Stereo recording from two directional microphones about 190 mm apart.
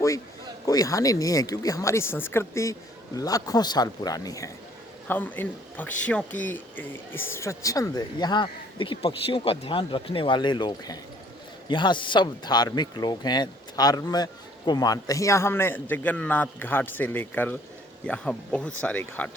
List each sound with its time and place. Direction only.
0.6 s a man's voice: 20° left (ahead or behind)